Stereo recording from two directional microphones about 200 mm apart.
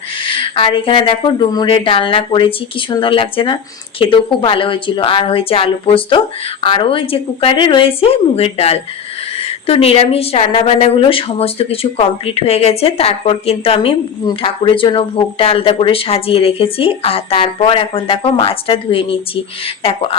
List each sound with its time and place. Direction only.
0.3 s speech: 25° left (ahead or behind)